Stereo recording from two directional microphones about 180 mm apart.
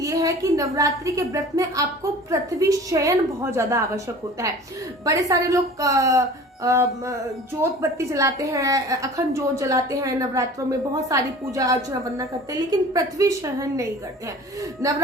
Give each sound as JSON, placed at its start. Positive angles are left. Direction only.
{"t": 0.0, "sound": "a woman's voice", "side_deg": -20}